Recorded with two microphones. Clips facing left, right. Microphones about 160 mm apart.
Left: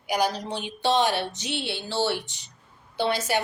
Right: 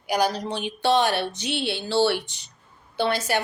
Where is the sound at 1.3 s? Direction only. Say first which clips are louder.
Right 3 dB; 15° right (ahead or behind).